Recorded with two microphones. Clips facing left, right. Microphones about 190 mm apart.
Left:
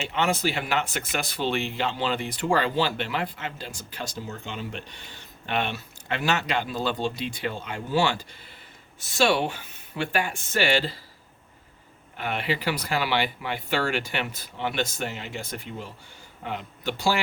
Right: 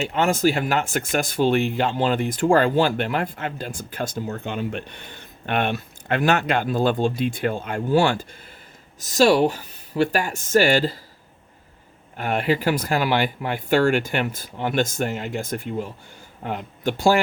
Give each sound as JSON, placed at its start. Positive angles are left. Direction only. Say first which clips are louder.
{"t": 0.1, "sound": "speech", "louder": "right 5 dB", "side_deg": -45}
{"t": 12.1, "sound": "speech", "louder": "right 7 dB", "side_deg": -45}